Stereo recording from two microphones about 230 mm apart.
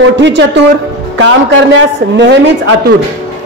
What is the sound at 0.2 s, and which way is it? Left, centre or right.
Speech, right.